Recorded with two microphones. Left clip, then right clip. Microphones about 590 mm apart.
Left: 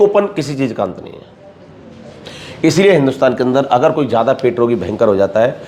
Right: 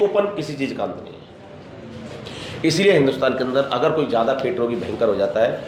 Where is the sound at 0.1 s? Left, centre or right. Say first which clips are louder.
Left 6 dB; left.